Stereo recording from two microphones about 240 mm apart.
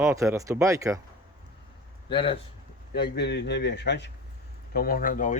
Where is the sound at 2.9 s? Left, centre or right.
Left.